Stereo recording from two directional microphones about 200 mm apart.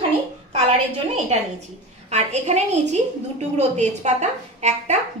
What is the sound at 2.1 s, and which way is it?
A woman's voice, 35° right (ahead or behind).